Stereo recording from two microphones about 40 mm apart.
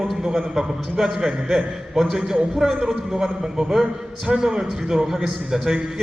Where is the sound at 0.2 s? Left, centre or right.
Centre.